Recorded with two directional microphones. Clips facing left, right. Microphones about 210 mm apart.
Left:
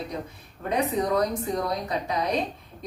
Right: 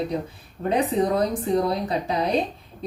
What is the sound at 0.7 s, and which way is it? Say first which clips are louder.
Speech: right 3 dB; 30° right (ahead or behind).